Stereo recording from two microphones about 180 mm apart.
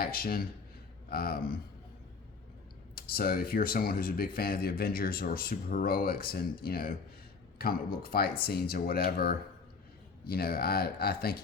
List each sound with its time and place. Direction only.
0.0 s speech: 55° left (ahead or behind)
2.9 s speech: 55° left (ahead or behind)